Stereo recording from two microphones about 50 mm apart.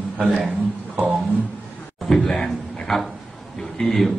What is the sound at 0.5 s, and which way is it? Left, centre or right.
Speech, right.